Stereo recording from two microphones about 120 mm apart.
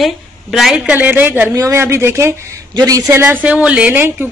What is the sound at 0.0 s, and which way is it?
Speech, centre (ahead or behind).